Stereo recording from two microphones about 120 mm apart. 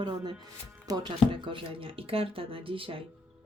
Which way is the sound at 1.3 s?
45° right (ahead or behind).